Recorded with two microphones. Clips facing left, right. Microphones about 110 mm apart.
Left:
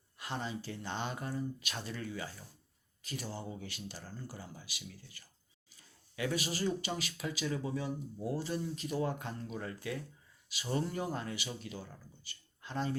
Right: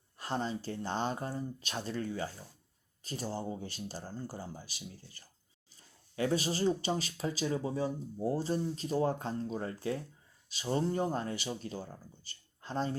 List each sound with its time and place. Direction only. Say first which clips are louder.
0.2 s speech: right 4 dB; 35° right (ahead or behind)